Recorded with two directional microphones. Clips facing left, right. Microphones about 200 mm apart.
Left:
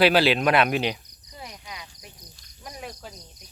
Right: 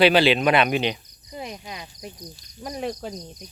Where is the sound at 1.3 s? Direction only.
20° right (ahead or behind).